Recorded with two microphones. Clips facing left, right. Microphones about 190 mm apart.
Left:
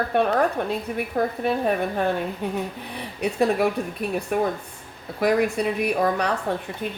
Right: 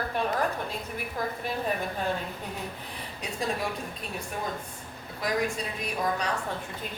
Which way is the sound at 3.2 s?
65° left (ahead or behind).